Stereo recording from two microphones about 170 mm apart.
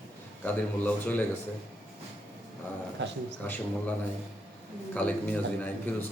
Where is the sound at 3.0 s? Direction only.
90° right.